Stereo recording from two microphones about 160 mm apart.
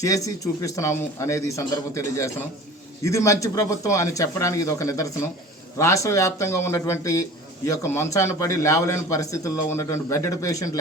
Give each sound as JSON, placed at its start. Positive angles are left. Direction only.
{"t": 0.0, "sound": "a man's voice", "side_deg": 20}